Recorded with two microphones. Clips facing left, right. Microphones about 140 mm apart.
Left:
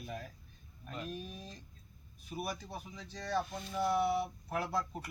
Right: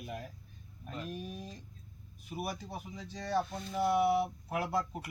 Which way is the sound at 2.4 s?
5° right (ahead or behind).